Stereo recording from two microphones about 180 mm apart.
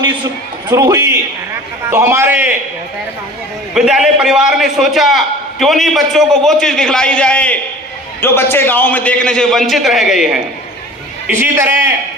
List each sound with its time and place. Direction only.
0.7 s a man's voice: 20° right (ahead or behind)
3.8 s a man's voice: 5° right (ahead or behind)
11.3 s a man's voice: 10° right (ahead or behind)